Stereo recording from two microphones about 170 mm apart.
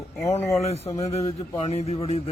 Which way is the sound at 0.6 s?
40° left (ahead or behind).